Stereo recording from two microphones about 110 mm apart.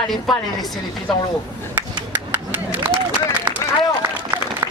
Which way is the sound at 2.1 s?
15° right (ahead or behind).